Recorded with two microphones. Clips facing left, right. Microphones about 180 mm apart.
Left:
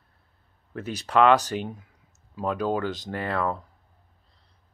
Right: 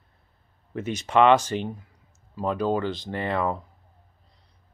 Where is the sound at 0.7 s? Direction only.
5° right (ahead or behind).